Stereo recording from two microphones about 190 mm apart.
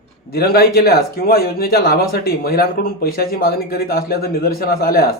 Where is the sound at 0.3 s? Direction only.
55° left (ahead or behind).